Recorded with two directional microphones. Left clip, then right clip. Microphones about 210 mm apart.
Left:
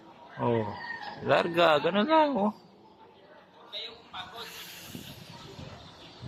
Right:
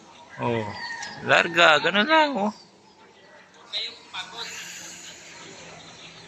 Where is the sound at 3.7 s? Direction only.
50° left (ahead or behind).